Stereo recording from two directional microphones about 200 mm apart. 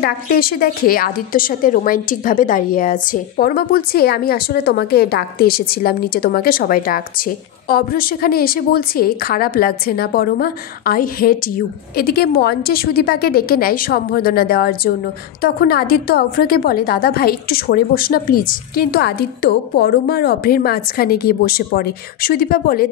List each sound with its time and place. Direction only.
0.0 s a woman's voice: 50° left (ahead or behind)